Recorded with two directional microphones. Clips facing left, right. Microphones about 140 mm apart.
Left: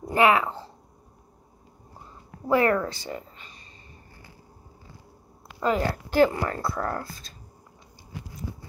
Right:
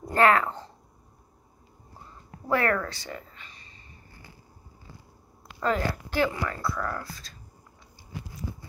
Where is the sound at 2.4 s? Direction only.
15° left (ahead or behind).